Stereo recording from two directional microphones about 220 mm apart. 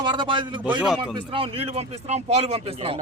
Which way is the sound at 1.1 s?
25° right (ahead or behind).